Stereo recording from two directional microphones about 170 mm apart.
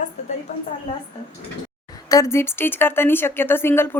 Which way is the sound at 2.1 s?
20° left (ahead or behind).